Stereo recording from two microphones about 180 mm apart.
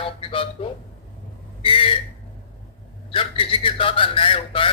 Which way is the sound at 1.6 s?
30° left (ahead or behind).